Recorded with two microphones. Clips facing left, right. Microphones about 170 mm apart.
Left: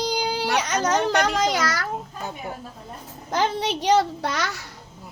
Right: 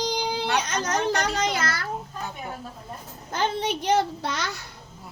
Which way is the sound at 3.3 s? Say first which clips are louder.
Left 3 dB; 90° left.